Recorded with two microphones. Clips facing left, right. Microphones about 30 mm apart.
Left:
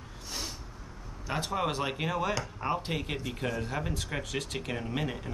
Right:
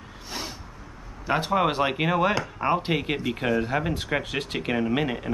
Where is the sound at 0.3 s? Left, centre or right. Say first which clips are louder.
Right 4 dB; right.